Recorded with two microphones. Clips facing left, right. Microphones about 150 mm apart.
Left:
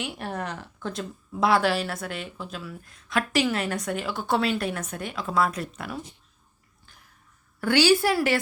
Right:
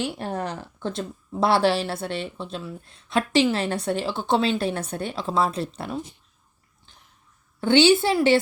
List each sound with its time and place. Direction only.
0.0 s speech: 30° right (ahead or behind)
7.6 s speech: 25° right (ahead or behind)